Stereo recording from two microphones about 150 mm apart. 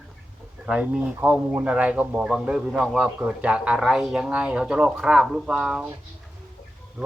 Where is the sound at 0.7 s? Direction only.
5° right (ahead or behind).